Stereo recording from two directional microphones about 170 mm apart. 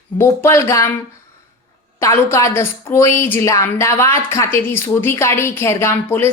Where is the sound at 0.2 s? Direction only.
15° left (ahead or behind).